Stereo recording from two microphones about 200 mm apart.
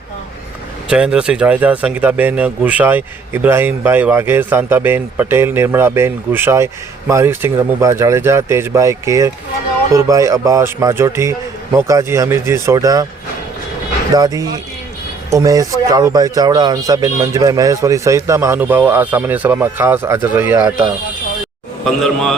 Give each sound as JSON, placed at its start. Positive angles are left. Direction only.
{"t": 0.9, "sound": "speech", "side_deg": -5}
{"t": 14.2, "sound": "speech", "side_deg": -20}
{"t": 21.8, "sound": "a man's voice", "side_deg": 0}